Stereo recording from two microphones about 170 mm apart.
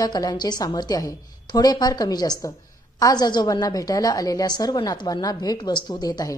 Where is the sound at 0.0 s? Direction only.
25° left (ahead or behind).